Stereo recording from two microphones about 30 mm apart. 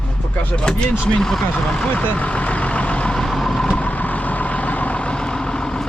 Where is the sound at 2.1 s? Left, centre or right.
Left.